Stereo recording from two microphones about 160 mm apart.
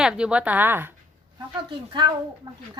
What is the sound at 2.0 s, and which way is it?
Speech, 25° right (ahead or behind).